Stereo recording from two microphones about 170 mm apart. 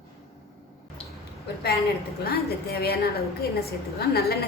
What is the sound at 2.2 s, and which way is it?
Speech, 65° left (ahead or behind).